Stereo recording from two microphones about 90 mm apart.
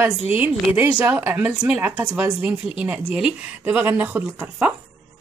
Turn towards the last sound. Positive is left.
turn(degrees=-20)  # may be behind; listen again after turning